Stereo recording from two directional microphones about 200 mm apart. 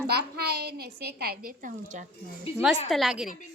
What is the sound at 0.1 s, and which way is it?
A woman's voice, 55° right (ahead or behind).